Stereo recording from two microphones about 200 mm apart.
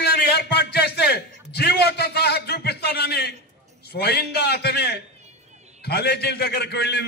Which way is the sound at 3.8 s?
55° left (ahead or behind).